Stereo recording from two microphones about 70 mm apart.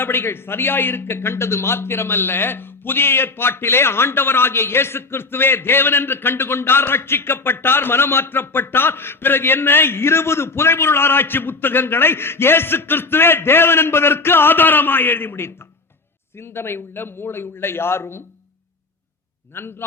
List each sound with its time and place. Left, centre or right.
0.0 s a man's voice: left
19.5 s a man's voice: left